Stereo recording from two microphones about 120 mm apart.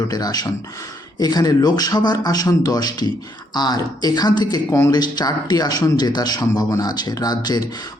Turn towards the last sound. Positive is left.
turn(degrees=35)  # may be behind; listen again after turning